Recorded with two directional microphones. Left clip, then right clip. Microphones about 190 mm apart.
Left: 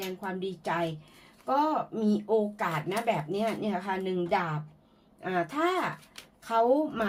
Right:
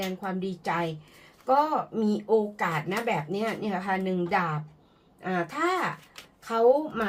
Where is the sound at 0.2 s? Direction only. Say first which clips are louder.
Right 2 dB; 35° left (ahead or behind).